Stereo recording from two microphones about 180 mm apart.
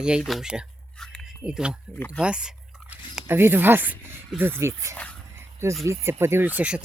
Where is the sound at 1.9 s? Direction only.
10° left (ahead or behind).